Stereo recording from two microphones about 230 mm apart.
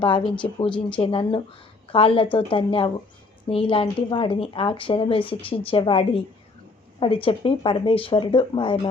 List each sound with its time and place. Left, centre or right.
0.3 s speech: left